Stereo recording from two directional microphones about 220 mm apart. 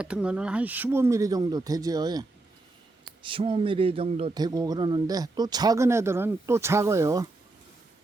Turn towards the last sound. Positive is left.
turn(degrees=-15)  # may be behind; listen again after turning